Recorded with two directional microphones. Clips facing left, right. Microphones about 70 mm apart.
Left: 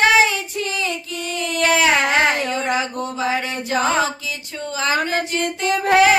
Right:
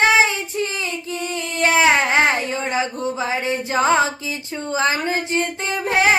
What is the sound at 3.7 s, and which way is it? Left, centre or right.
Music, right.